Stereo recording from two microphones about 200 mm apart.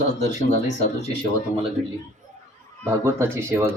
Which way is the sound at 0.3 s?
35° left (ahead or behind).